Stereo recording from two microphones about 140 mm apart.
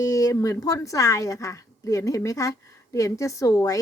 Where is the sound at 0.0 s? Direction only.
25° left (ahead or behind).